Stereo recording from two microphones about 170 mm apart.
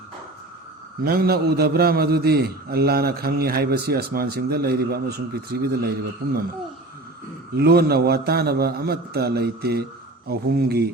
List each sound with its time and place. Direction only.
1.0 s a man's voice: 65° right (ahead or behind)
7.5 s a man's voice: 65° right (ahead or behind)